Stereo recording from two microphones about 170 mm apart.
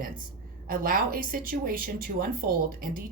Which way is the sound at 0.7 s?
55° right (ahead or behind).